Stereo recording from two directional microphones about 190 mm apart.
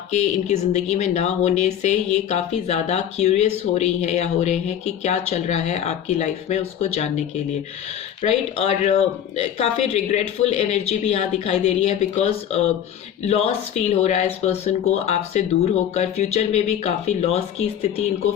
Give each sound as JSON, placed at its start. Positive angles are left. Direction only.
{"t": 0.1, "sound": "speech", "side_deg": 35}
{"t": 8.2, "sound": "speech", "side_deg": 35}